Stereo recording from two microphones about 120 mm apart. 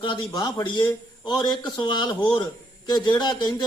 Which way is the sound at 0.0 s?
40° left (ahead or behind).